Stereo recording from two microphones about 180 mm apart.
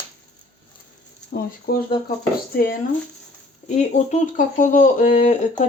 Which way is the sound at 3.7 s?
45° left (ahead or behind).